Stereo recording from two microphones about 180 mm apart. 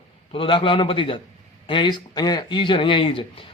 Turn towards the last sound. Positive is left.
turn(degrees=30)  # may be behind; listen again after turning